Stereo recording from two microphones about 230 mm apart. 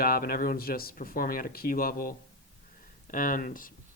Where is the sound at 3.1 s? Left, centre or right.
Left.